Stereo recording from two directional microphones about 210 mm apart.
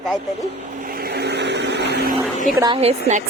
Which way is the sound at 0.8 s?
45° right (ahead or behind).